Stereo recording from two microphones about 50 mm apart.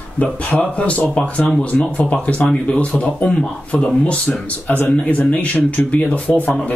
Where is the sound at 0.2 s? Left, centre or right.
Left.